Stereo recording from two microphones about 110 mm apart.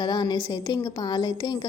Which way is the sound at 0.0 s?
40° left (ahead or behind).